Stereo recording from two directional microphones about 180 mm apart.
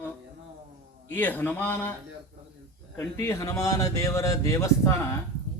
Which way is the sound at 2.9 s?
15° left (ahead or behind).